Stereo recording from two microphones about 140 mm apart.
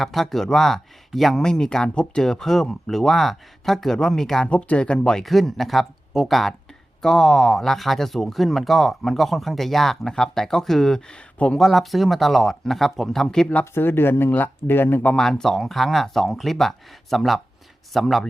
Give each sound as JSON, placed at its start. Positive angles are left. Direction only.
{"t": 0.0, "sound": "speech", "side_deg": 0}